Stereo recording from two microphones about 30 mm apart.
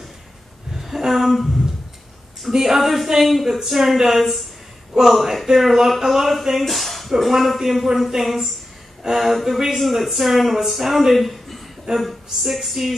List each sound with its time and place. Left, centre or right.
0.7 s a sound: centre
2.5 s female singing: centre
3.2 s speech: centre
4.9 s female singing: centre
6.6 s speech: centre